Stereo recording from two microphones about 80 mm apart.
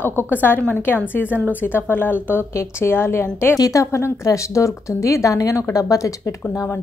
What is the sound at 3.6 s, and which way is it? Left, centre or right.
A woman's voice, left.